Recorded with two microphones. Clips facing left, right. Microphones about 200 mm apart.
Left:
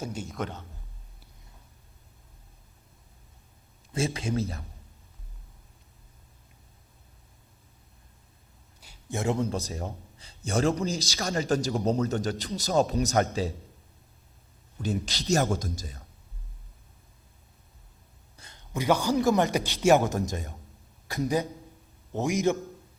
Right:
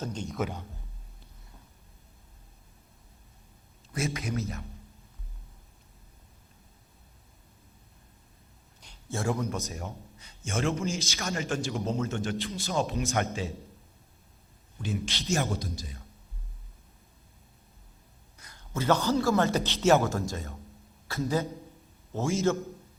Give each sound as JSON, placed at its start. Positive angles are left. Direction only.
{"t": 0.0, "sound": "a man's voice", "side_deg": 10}
{"t": 0.3, "sound": "a man's voice", "side_deg": -5}
{"t": 3.9, "sound": "speech", "side_deg": 30}
{"t": 8.8, "sound": "a sound", "side_deg": 5}
{"t": 9.1, "sound": "a man's voice", "side_deg": 25}
{"t": 14.8, "sound": "a man's voice", "side_deg": 40}
{"t": 18.3, "sound": "a sound", "side_deg": 25}
{"t": 18.7, "sound": "a man's voice", "side_deg": 15}